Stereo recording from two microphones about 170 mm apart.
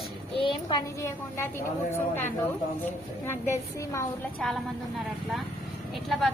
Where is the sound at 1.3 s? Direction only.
15° left (ahead or behind).